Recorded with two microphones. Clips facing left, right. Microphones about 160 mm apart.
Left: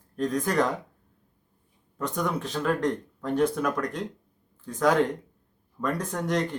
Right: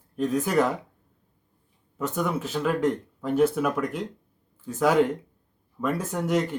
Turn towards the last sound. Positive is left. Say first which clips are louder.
# right 2 dB
turn(degrees=-5)  # may be behind; listen again after turning